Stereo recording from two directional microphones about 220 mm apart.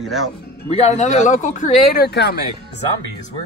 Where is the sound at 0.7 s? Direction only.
30° left (ahead or behind); by 2.4 s 45° left (ahead or behind).